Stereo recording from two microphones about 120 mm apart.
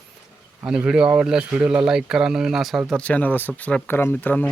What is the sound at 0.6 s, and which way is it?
Speech, 10° right (ahead or behind).